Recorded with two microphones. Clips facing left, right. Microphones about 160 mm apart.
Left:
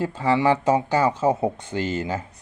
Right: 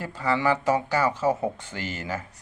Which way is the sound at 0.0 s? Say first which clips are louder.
Left 5 dB; 20° left (ahead or behind).